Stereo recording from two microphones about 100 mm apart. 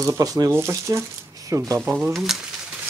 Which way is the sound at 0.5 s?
30° right (ahead or behind).